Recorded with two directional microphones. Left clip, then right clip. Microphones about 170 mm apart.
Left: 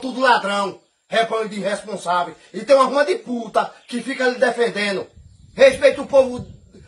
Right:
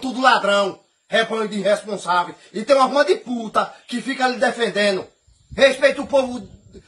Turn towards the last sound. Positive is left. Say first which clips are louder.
# left 2 dB
turn(degrees=20)  # may be behind; listen again after turning